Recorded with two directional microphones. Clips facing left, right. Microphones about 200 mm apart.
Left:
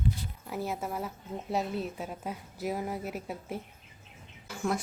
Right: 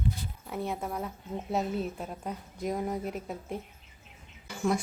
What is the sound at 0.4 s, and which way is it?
A woman's voice, centre (ahead or behind).